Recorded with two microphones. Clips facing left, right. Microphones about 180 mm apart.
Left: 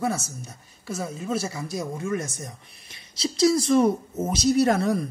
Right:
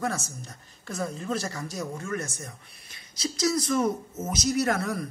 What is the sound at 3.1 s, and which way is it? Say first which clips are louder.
Speech: left 6 dB; 25° left (ahead or behind).